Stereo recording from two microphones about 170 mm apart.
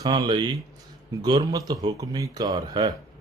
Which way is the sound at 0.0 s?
25° right (ahead or behind).